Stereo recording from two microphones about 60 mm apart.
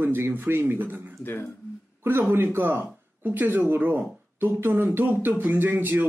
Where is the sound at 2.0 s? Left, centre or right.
Right.